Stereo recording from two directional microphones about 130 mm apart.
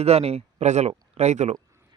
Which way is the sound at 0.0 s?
55° right (ahead or behind).